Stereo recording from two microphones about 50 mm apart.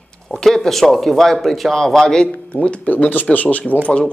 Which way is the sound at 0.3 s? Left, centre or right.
Centre.